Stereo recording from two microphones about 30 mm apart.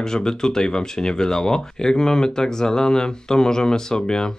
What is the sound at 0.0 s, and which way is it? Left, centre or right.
Speech, left.